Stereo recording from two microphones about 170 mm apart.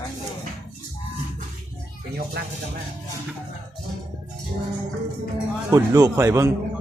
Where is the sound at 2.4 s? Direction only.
90° right.